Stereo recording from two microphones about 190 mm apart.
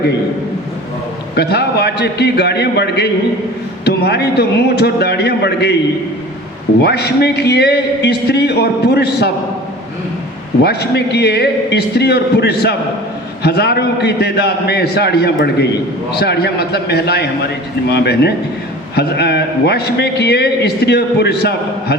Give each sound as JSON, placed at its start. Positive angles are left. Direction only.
{"t": 1.4, "sound": "a man's voice", "side_deg": 60}
{"t": 6.8, "sound": "a man's voice", "side_deg": 60}
{"t": 10.6, "sound": "a man's voice", "side_deg": 60}